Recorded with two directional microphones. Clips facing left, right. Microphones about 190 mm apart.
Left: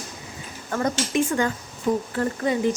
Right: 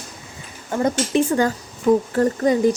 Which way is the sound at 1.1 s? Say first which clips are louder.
Right 4 dB; 35° right (ahead or behind).